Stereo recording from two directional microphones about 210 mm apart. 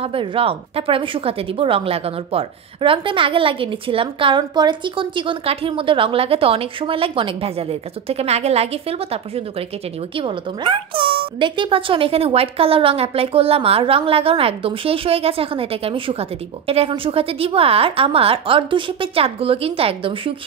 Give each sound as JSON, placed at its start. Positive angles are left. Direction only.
{"t": 0.0, "sound": "speech", "side_deg": -25}